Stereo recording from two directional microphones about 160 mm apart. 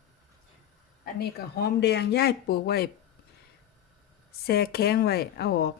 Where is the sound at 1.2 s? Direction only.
90° left.